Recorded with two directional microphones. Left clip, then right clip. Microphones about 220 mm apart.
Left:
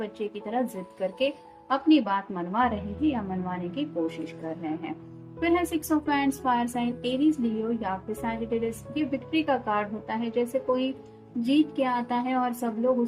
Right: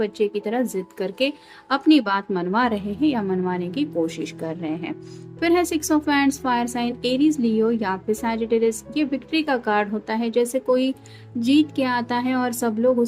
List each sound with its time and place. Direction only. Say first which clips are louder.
0.0 s a woman's voice: right 10 dB; 40° right (ahead or behind)